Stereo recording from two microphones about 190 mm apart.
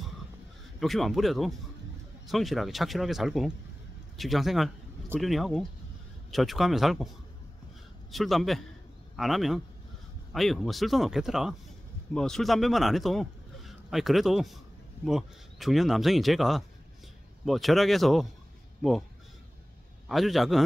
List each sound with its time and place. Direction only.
0.7 s speech: centre (ahead or behind)
8.1 s a man's voice: centre (ahead or behind)
20.1 s speech: centre (ahead or behind)